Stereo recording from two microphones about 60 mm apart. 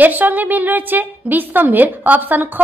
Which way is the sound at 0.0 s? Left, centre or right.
Right.